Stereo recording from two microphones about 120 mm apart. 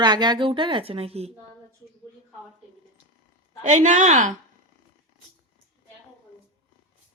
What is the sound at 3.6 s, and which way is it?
Speech, 85° right.